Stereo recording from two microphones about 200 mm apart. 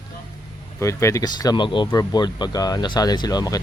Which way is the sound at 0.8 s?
15° left (ahead or behind).